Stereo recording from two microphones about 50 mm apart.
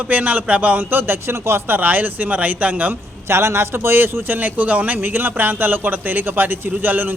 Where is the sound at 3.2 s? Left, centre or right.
Right.